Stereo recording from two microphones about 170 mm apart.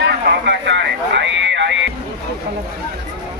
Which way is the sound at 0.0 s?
90° right.